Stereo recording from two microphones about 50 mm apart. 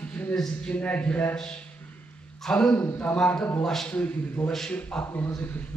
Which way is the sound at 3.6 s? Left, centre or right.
Centre.